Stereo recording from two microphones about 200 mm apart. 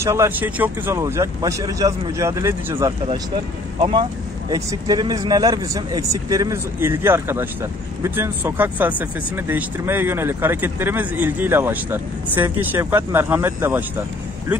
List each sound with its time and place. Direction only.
0.0 s speech: 15° right (ahead or behind)
4.5 s speech: 15° right (ahead or behind)